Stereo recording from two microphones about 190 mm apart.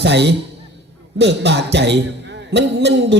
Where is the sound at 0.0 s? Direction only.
65° right (ahead or behind).